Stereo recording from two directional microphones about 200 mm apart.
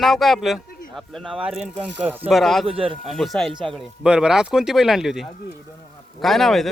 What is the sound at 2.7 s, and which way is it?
Speech, 25° right (ahead or behind).